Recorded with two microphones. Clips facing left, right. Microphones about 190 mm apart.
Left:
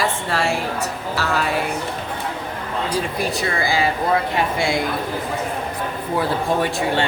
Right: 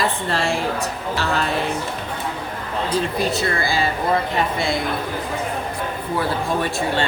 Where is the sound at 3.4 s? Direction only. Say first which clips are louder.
Left 1 dB; 15° left (ahead or behind).